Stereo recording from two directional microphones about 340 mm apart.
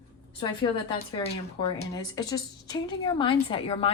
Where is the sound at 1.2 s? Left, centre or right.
Centre.